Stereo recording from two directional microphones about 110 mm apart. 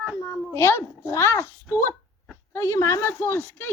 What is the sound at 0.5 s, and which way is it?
A child's voice, 25° left (ahead or behind).